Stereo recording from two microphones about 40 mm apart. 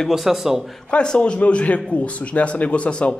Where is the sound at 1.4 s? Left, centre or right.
Left.